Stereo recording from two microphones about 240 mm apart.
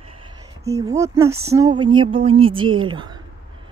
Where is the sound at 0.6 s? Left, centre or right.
Centre.